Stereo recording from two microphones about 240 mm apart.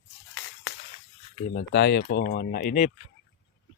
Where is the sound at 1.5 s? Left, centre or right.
Left.